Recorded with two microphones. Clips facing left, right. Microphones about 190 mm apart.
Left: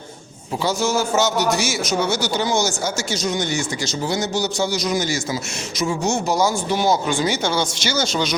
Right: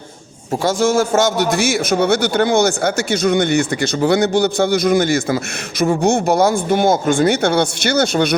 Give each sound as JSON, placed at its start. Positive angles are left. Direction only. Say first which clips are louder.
{"t": 0.6, "sound": "a man's voice", "louder": "right 5 dB", "side_deg": -50}